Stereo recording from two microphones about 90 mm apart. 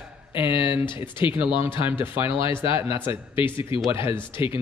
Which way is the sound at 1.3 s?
20° right (ahead or behind).